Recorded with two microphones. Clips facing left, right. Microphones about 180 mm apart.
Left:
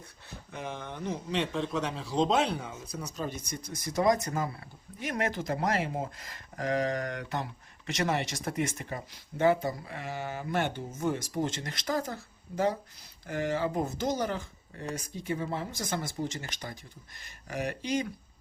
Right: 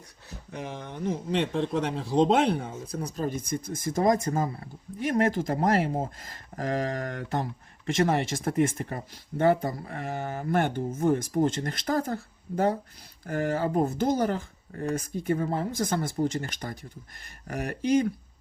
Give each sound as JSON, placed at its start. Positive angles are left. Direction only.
{"t": 0.3, "sound": "a man's voice", "side_deg": -40}
{"t": 4.2, "sound": "speech", "side_deg": -25}
{"t": 4.9, "sound": "a man's voice", "side_deg": -45}
{"t": 11.6, "sound": "a man's voice", "side_deg": -55}